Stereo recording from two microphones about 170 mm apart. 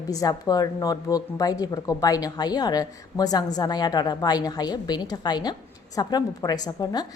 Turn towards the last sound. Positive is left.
turn(degrees=25)  # may be behind; listen again after turning